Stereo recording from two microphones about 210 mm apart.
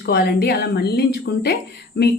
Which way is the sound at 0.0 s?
50° left (ahead or behind).